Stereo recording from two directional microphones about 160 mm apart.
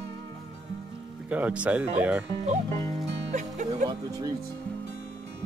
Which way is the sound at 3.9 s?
20° right (ahead or behind).